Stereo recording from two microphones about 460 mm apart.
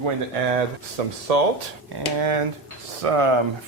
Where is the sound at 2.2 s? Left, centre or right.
Right.